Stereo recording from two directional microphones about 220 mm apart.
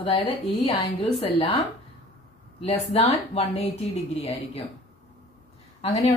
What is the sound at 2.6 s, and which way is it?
Speech, 25° left (ahead or behind).